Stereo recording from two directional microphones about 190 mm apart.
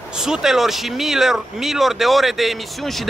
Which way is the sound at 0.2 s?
5° right (ahead or behind).